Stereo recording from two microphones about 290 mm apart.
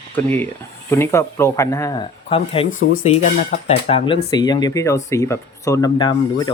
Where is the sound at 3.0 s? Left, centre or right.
Left.